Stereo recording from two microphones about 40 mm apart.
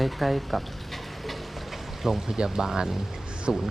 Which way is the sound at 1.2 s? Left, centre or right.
Centre.